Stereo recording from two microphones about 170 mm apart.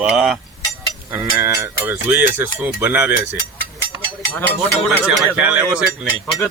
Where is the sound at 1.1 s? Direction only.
15° right (ahead or behind).